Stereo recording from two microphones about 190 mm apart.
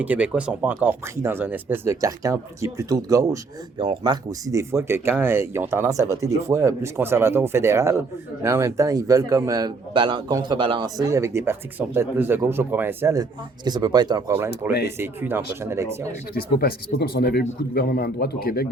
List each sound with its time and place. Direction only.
0.0 s a man's voice: 10° right (ahead or behind)
16.3 s speech: 55° left (ahead or behind)